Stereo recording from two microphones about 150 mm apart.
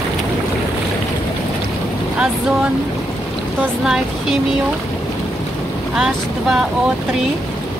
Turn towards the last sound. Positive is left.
turn(degrees=-5)  # may be behind; listen again after turning